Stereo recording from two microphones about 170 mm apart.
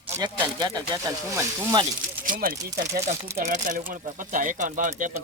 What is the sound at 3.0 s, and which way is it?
Speech, 45° right (ahead or behind).